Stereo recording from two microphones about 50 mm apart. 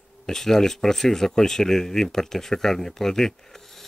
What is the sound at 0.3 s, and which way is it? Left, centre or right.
Speech, centre.